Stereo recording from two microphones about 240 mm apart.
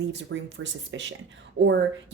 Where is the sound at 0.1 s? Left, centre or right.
Right.